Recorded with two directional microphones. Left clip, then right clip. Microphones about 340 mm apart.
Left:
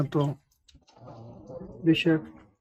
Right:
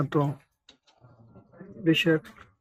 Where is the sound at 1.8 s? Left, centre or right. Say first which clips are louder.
Right 1 dB; centre.